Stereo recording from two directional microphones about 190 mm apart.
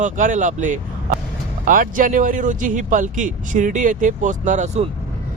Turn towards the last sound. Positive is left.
turn(degrees=-40)  # may be behind; listen again after turning